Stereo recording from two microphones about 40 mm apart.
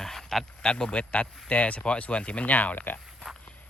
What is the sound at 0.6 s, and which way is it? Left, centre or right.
Speech, left.